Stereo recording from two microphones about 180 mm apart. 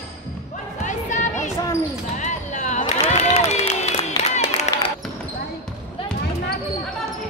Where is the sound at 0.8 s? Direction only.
40° left (ahead or behind).